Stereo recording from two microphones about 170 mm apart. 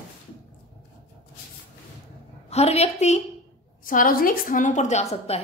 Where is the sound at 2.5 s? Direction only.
40° left (ahead or behind).